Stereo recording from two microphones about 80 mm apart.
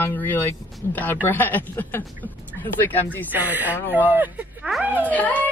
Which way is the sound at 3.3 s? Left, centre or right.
Right.